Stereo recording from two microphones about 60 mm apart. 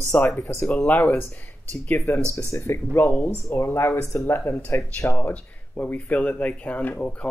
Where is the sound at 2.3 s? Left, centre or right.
Left.